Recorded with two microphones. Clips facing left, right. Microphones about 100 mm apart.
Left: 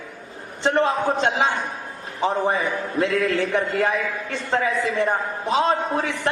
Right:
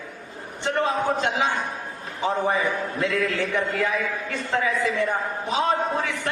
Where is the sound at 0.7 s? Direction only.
30° left (ahead or behind).